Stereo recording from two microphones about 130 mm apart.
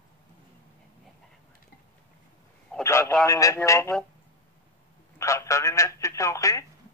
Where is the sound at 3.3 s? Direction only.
25° left (ahead or behind).